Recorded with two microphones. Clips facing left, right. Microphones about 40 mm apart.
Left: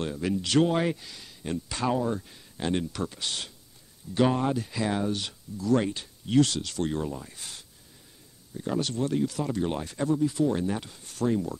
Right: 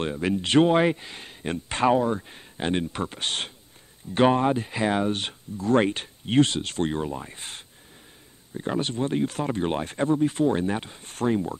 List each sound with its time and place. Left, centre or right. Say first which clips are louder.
0.0 s speech: right 3 dB; right